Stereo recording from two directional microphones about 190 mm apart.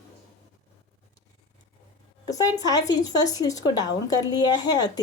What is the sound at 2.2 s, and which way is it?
A woman's voice, 20° left (ahead or behind).